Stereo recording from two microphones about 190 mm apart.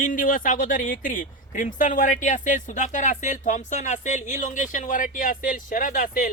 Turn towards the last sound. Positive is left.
turn(degrees=45)  # may be behind; listen again after turning